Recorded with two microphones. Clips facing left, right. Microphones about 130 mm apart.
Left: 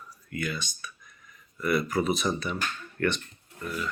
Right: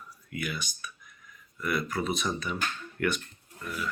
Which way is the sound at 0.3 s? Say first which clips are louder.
Left 2 dB; 10° right (ahead or behind).